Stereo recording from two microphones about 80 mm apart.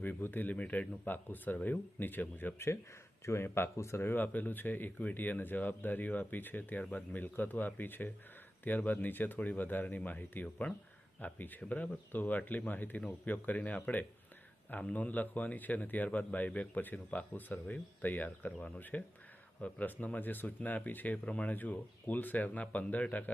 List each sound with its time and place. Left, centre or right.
0.0 s speech: left